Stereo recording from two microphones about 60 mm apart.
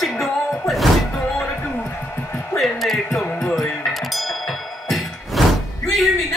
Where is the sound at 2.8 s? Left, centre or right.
Centre.